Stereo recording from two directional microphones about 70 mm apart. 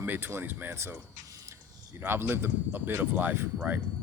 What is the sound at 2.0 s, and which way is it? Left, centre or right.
Speech, right.